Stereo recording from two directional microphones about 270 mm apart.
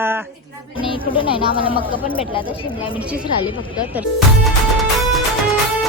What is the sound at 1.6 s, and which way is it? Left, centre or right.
Speech, centre.